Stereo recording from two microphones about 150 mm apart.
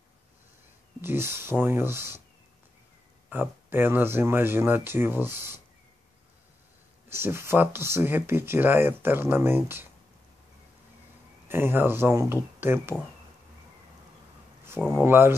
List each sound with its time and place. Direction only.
1.0 s speech: 15° right (ahead or behind)
3.3 s speech: 15° right (ahead or behind)
7.1 s speech: 15° right (ahead or behind)
11.4 s speech: 15° right (ahead or behind)
14.6 s speech: 15° right (ahead or behind)